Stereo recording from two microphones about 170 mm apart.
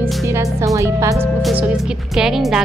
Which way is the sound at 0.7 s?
20° right (ahead or behind).